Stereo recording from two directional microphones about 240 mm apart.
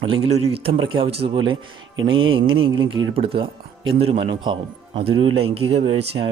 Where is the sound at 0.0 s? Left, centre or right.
Right.